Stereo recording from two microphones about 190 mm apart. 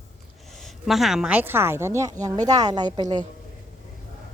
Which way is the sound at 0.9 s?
Centre (ahead or behind).